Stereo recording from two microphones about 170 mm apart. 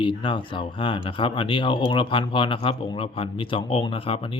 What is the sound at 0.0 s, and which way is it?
Speech, 30° left (ahead or behind).